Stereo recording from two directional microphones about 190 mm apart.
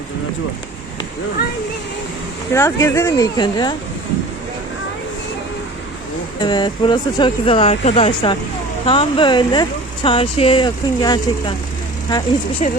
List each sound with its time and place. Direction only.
2.5 s speech: 15° left (ahead or behind)
6.4 s speech: 25° left (ahead or behind)
12.6 s speech: 40° left (ahead or behind)